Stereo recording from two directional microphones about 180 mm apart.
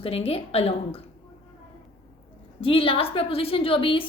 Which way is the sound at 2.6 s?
30° left (ahead or behind).